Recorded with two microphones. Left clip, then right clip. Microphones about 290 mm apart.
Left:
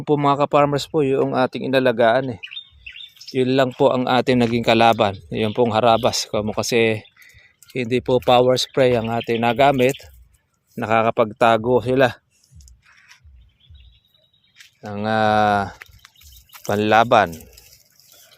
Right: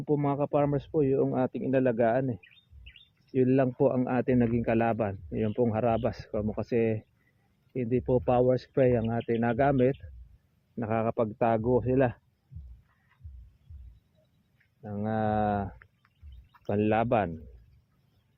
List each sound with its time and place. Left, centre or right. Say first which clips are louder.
0.0 s speech: left 11 dB; left
14.8 s speech: left 12 dB; left
16.0 s a sound: left 19 dB; centre